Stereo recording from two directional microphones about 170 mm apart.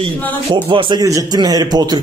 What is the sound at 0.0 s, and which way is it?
A man's voice, 30° right (ahead or behind).